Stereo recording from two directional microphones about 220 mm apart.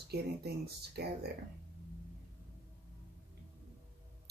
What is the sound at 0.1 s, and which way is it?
Speech, 45° right (ahead or behind).